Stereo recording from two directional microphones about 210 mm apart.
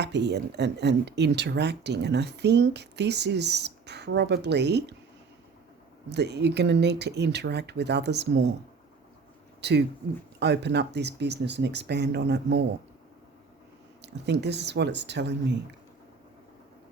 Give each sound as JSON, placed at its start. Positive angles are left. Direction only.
{"t": 0.0, "sound": "speech", "side_deg": -55}
{"t": 6.1, "sound": "speech", "side_deg": -55}
{"t": 9.6, "sound": "speech", "side_deg": -55}
{"t": 14.0, "sound": "speech", "side_deg": -55}